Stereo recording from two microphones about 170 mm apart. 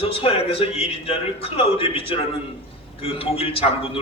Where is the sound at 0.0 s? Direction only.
35° left (ahead or behind).